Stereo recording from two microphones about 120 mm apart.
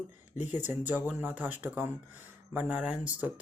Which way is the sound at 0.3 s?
75° left (ahead or behind).